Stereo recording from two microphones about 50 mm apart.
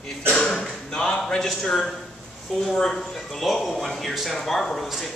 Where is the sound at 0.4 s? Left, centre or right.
Centre.